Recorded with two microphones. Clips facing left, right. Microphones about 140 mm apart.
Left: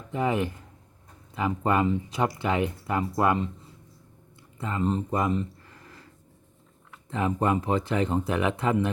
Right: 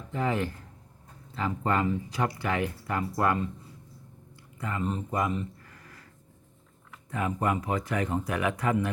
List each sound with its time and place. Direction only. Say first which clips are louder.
0.1 s speech: left 3 dB; 15° left (ahead or behind)
4.5 s speech: left 4 dB; 25° left (ahead or behind)
7.1 s speech: left 3 dB; 25° left (ahead or behind)